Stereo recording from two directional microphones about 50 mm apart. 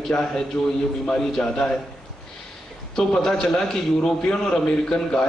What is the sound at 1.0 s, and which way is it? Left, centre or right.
Speech, centre.